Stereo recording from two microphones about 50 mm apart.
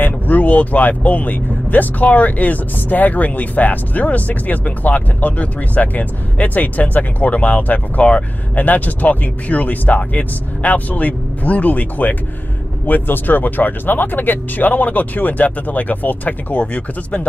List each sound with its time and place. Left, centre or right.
0.0 s speech: left